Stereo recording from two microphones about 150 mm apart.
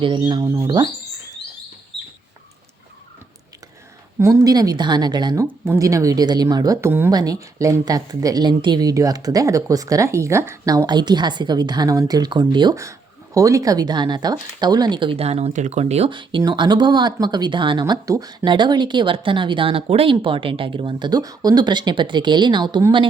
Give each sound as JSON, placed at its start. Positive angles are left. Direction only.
{"t": 0.0, "sound": "speech", "side_deg": -30}
{"t": 0.4, "sound": "speech", "side_deg": -20}
{"t": 4.2, "sound": "speech", "side_deg": -20}
{"t": 5.5, "sound": "speech", "side_deg": -15}